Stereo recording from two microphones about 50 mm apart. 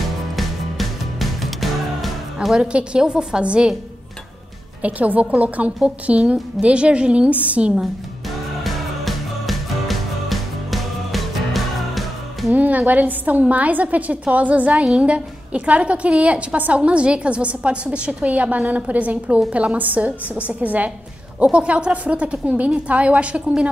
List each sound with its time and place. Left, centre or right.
0.4 s music: centre
2.5 s a woman's voice: centre
4.8 s a woman's voice: right
8.6 s music: centre
12.5 s a woman's voice: right